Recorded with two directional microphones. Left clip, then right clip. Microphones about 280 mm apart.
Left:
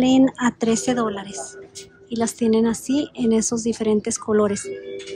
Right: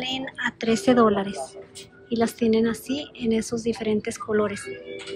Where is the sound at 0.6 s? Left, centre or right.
Centre.